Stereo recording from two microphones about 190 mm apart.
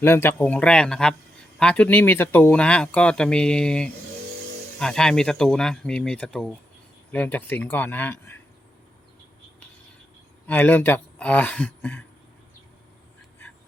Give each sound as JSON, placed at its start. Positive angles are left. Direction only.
{"t": 0.0, "sound": "speech", "side_deg": 10}
{"t": 10.4, "sound": "speech", "side_deg": 10}